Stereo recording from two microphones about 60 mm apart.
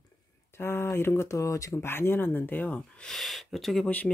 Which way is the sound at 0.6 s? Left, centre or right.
Left.